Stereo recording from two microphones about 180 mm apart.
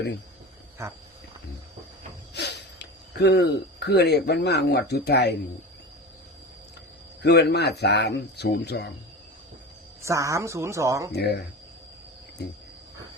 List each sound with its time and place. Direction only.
2.3 s speech: 70° left (ahead or behind)
7.2 s speech: 65° left (ahead or behind)
10.0 s a woman's voice: 15° right (ahead or behind)
11.1 s speech: 65° left (ahead or behind)